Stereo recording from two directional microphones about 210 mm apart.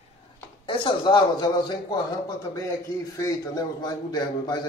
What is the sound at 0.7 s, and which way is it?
A man's voice, 25° left (ahead or behind).